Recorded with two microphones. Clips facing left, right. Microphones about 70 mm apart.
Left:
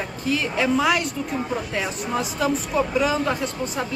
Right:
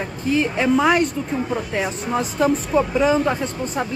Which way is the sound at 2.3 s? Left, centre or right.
Right.